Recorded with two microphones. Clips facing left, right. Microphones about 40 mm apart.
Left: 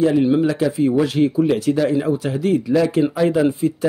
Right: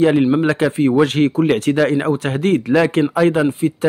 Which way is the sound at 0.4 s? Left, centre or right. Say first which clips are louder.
Right 2 dB; right.